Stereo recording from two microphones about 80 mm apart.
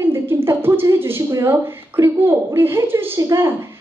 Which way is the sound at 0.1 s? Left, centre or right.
Right.